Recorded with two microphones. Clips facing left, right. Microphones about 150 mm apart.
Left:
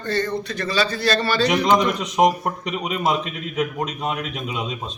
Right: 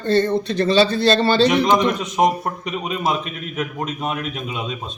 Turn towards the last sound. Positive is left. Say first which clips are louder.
# right 1 dB
turn(degrees=0)  # may be behind; listen again after turning